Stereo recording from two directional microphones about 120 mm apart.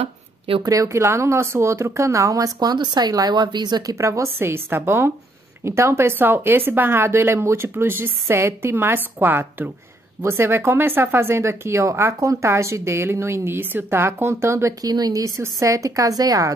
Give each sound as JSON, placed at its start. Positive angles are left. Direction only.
{"t": 0.6, "sound": "speech", "side_deg": -30}